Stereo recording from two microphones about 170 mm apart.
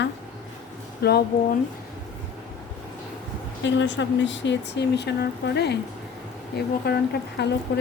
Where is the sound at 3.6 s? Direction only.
90° left; by 7.4 s 70° left (ahead or behind).